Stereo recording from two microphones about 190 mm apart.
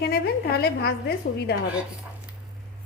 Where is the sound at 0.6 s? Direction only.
60° left (ahead or behind).